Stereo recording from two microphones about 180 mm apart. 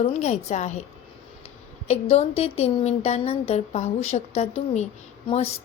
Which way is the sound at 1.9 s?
35° left (ahead or behind).